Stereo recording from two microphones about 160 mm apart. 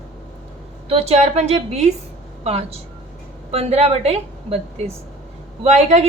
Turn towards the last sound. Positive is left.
turn(degrees=-45)  # may be behind; listen again after turning